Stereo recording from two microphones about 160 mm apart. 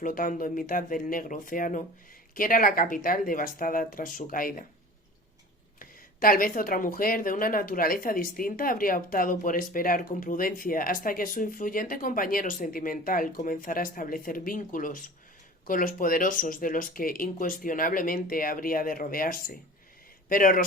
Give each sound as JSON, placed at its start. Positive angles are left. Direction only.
{"t": 0.0, "sound": "speech", "side_deg": 60}
{"t": 5.8, "sound": "speech", "side_deg": 65}